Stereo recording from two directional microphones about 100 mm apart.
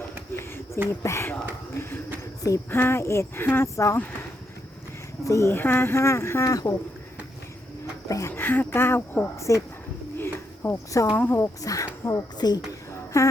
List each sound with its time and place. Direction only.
0.3 s a sound: 25° left (ahead or behind)
0.9 s speech: 30° left (ahead or behind)
5.2 s speech: 30° left (ahead or behind)
8.0 s speech: 35° left (ahead or behind)
8.3 s speech: 20° left (ahead or behind)
9.4 s speech: 30° left (ahead or behind)
10.2 s a sound: 25° left (ahead or behind)
11.1 s speech: 15° left (ahead or behind)
11.3 s speech: 30° left (ahead or behind)
13.1 s speech: 30° left (ahead or behind)